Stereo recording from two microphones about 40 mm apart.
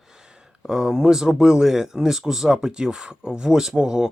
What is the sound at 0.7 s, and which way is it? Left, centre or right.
Speech, centre.